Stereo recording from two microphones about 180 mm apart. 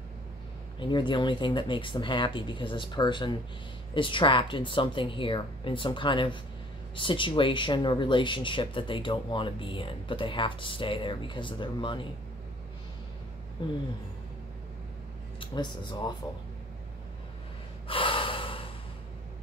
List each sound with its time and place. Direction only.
0.7 s speech: 25° left (ahead or behind)
15.4 s speech: 25° left (ahead or behind)
17.8 s gasp: 30° left (ahead or behind)